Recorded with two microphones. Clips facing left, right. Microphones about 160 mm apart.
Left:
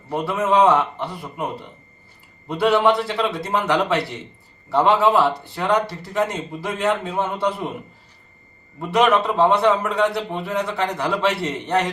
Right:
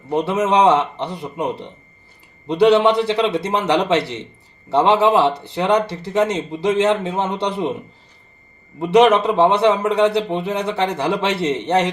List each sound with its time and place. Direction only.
0.1 s a man's voice: 20° right (ahead or behind)
8.8 s a man's voice: 20° right (ahead or behind)